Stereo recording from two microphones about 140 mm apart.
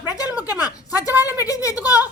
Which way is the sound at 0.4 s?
25° left (ahead or behind).